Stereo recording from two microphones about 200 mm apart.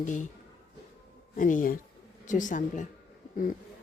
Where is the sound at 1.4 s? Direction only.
40° left (ahead or behind).